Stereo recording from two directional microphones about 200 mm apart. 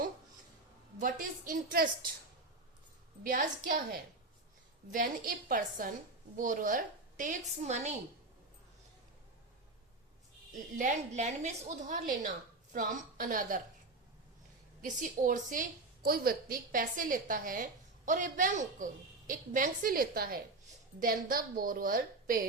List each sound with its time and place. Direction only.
1.2 s a woman's voice: 45° right (ahead or behind)
3.2 s a woman's voice: 45° right (ahead or behind)
10.5 s a woman's voice: 40° right (ahead or behind)
14.8 s a woman's voice: 40° right (ahead or behind)